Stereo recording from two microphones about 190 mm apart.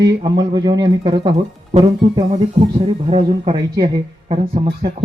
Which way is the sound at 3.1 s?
30° right (ahead or behind).